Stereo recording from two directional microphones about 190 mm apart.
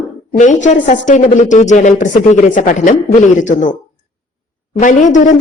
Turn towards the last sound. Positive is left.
turn(degrees=40)  # may be behind; listen again after turning